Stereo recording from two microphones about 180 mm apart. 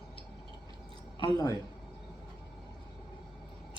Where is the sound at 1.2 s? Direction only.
20° left (ahead or behind).